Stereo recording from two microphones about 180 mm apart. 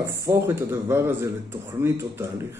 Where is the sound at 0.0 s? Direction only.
15° right (ahead or behind).